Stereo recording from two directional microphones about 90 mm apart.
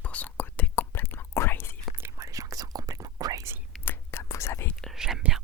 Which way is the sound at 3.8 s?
30° left (ahead or behind).